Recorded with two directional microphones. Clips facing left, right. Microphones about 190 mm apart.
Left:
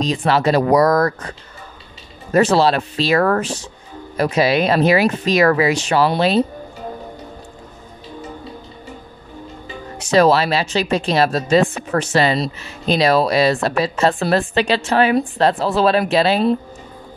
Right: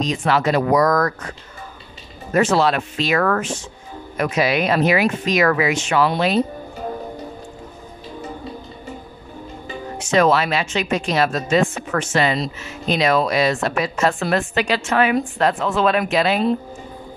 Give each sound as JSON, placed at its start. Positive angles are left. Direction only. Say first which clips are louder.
{"t": 0.0, "sound": "speech", "louder": "left 2 dB", "side_deg": 30}
{"t": 2.3, "sound": "speech", "louder": "left 3 dB", "side_deg": 35}
{"t": 9.9, "sound": "speech", "louder": "left 3 dB", "side_deg": 35}